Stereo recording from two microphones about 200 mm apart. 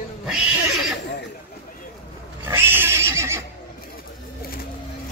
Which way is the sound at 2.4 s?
10° right (ahead or behind).